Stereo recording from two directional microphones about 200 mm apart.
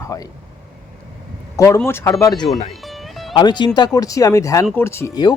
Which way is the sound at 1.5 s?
15° left (ahead or behind).